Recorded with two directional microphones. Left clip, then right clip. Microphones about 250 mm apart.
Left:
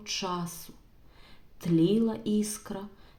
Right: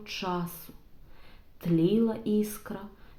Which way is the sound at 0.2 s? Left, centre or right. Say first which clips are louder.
Right 2 dB; left.